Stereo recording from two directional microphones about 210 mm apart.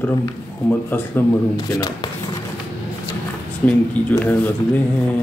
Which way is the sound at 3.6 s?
5° left (ahead or behind).